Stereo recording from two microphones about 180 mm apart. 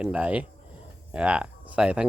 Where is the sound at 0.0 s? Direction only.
5° right (ahead or behind).